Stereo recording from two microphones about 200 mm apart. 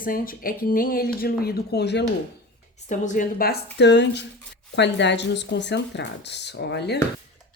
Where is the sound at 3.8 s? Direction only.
60° left (ahead or behind).